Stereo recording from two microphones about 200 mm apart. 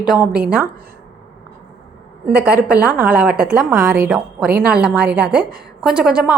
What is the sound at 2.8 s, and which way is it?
A woman's voice, 5° right (ahead or behind).